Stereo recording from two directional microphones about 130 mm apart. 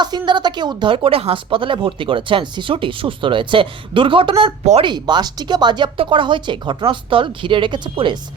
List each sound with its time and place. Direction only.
0.0 s speech: 35° right (ahead or behind)